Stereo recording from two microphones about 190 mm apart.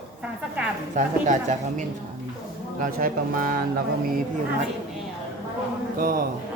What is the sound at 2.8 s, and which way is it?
Speech, 45° right (ahead or behind).